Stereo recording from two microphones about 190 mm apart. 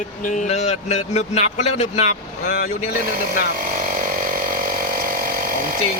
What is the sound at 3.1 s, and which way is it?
Vehicle, 50° right (ahead or behind).